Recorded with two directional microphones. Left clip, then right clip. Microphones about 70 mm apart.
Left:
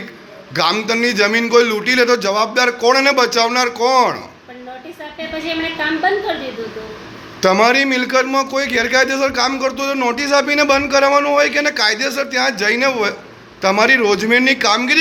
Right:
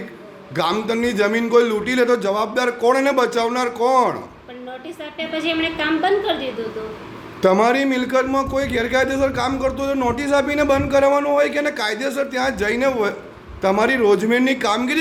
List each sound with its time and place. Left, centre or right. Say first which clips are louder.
0.5 s speech: left 4 dB; right
7.4 s speech: left 3 dB; right